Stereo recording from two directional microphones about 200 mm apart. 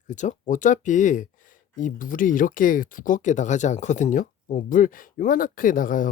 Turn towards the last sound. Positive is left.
turn(degrees=45)  # may be behind; listen again after turning